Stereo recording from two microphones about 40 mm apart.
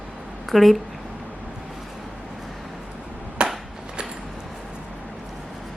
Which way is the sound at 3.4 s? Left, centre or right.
Right.